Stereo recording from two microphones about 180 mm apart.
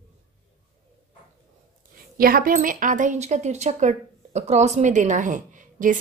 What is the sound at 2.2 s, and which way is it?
A woman's voice, 50° right (ahead or behind).